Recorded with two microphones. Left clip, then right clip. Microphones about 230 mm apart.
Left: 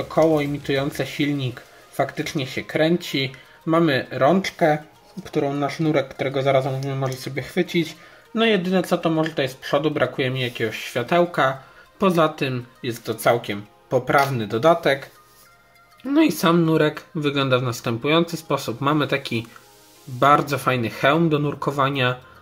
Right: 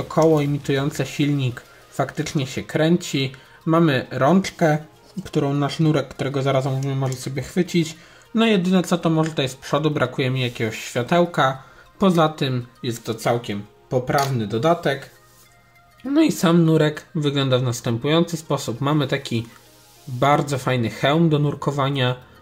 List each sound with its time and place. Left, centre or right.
0.1 s speech: centre
16.1 s speech: centre